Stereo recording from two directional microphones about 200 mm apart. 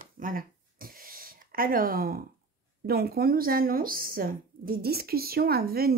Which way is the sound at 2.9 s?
50° right (ahead or behind).